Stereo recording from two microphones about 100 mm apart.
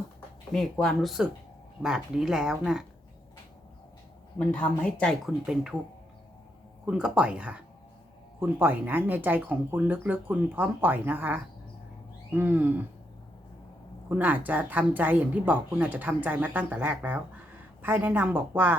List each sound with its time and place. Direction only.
0.5 s speech: 5° left (ahead or behind)
4.4 s speech: 10° left (ahead or behind)
5.2 s speech: 5° right (ahead or behind)
6.8 s a woman's voice: 10° right (ahead or behind)
14.1 s a woman's voice: 20° right (ahead or behind)